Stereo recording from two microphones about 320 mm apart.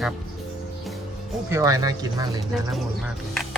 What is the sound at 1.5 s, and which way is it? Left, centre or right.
Speech, centre.